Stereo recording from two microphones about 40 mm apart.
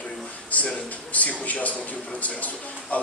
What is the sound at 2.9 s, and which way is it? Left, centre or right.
Speech, left.